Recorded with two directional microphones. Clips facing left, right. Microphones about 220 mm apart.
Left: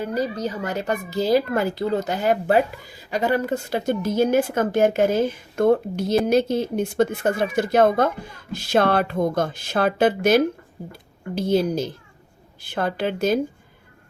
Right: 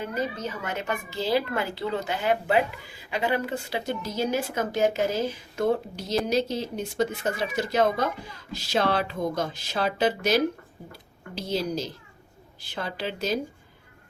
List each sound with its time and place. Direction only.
0.0 s a child's voice: 35° left (ahead or behind); by 13.4 s 50° left (ahead or behind)